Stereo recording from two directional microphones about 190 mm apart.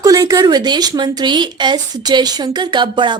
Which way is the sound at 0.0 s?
20° right (ahead or behind).